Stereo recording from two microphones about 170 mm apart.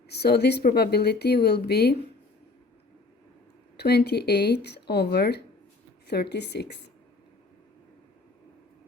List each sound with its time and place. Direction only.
0.1 s speech: 75° left (ahead or behind)
3.8 s a woman's voice: 75° left (ahead or behind)